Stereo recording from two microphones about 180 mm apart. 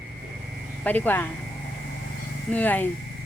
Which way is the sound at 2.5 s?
10° left (ahead or behind).